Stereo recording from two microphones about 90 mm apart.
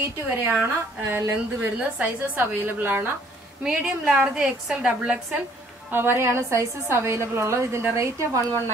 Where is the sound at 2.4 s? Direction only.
20° right (ahead or behind).